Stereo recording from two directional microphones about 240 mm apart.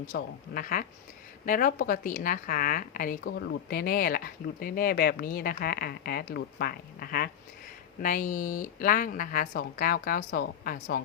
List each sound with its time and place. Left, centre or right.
0.1 s speech: left